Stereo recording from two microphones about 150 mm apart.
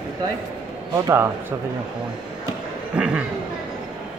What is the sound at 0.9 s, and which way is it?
Speech, 20° right (ahead or behind).